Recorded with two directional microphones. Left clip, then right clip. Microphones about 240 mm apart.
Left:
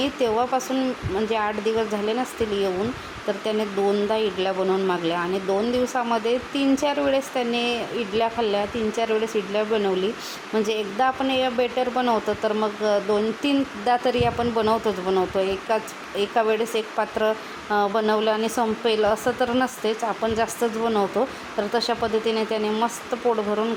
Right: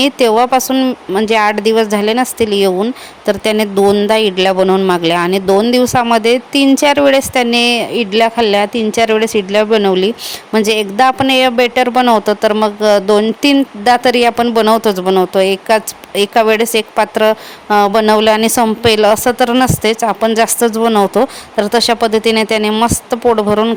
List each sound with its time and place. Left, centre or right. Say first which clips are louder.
0.0 s a woman's voice: right 12 dB; right